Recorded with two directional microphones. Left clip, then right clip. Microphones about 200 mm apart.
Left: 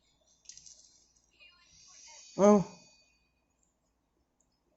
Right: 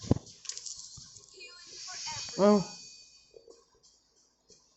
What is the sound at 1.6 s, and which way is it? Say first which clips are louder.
Snake: right 19 dB; 40° right (ahead or behind).